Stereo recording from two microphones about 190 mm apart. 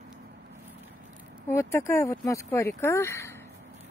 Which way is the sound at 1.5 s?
15° left (ahead or behind).